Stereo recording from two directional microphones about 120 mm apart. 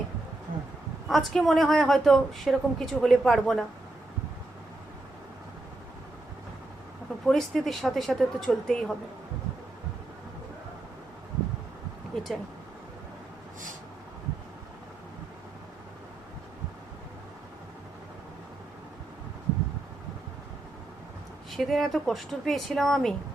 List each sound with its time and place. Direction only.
1.0 s speech: centre (ahead or behind)
7.3 s speech: centre (ahead or behind)
12.1 s a sound: centre (ahead or behind)
21.5 s speech: centre (ahead or behind)